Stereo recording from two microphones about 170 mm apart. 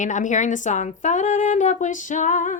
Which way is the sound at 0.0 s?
45° left (ahead or behind).